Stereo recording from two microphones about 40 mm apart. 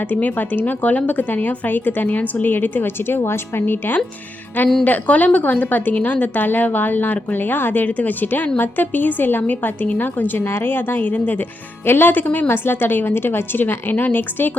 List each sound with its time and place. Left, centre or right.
0.1 s a woman's voice: left
4.8 s a woman's voice: left
11.9 s speech: left
12.5 s speech: left
13.9 s speech: left